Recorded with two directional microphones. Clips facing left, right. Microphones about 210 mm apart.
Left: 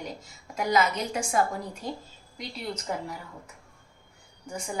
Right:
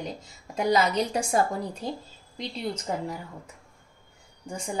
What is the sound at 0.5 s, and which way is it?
A woman's voice, 35° right (ahead or behind).